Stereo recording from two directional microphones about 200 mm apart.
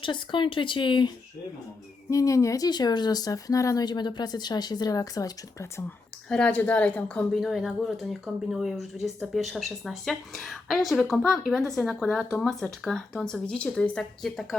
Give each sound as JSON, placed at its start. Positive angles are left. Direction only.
{"t": 0.0, "sound": "speech", "side_deg": 25}
{"t": 6.2, "sound": "a woman's voice", "side_deg": 5}